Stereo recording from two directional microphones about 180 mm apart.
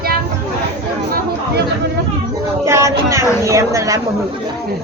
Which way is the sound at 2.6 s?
15° right (ahead or behind).